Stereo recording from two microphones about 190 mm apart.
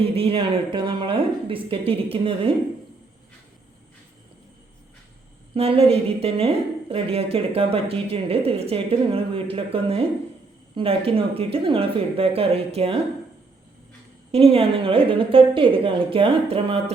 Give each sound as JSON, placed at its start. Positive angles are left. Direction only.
{"t": 0.0, "sound": "a woman's voice", "side_deg": -30}
{"t": 5.5, "sound": "a woman's voice", "side_deg": -30}
{"t": 14.3, "sound": "a woman's voice", "side_deg": -30}